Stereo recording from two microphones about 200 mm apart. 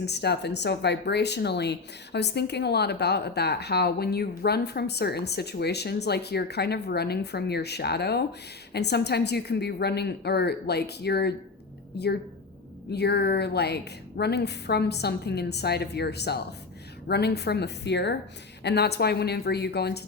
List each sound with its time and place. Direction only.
0.0 s a woman's voice: 55° left (ahead or behind)